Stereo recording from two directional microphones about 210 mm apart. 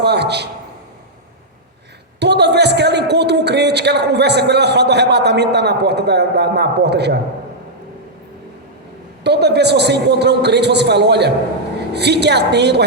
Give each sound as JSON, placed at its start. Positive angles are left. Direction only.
{"t": 0.0, "sound": "a woman's voice", "side_deg": -50}
{"t": 2.1, "sound": "a woman's voice", "side_deg": -55}
{"t": 9.2, "sound": "a woman's voice", "side_deg": -50}